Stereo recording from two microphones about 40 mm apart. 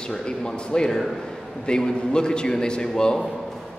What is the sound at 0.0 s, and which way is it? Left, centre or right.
A man's voice, centre.